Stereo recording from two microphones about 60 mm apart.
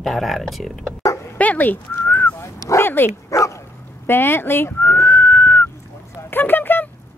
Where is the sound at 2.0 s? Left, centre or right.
Left.